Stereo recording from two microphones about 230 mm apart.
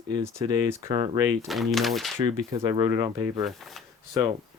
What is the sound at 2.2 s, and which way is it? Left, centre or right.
Speech, right.